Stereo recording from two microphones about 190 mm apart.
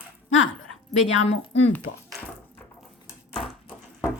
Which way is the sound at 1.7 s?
5° left (ahead or behind).